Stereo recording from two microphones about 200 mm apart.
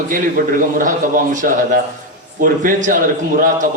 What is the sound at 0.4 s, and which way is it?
Speech, 55° right (ahead or behind).